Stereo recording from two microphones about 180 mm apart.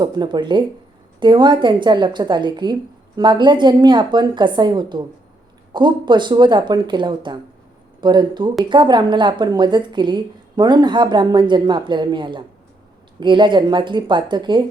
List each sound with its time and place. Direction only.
0.0 s a woman's voice: 25° right (ahead or behind)